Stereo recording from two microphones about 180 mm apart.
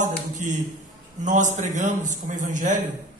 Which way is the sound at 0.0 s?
45° right (ahead or behind).